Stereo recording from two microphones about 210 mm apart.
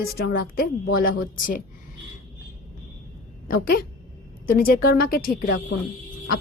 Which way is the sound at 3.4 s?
45° left (ahead or behind).